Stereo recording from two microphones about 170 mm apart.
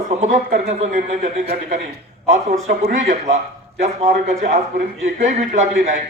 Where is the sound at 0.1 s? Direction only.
45° right (ahead or behind).